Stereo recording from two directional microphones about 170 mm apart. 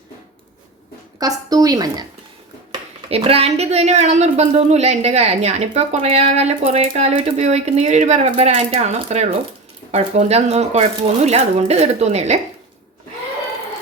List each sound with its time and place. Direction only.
1.2 s speech: 20° right (ahead or behind)
3.1 s speech: 35° right (ahead or behind)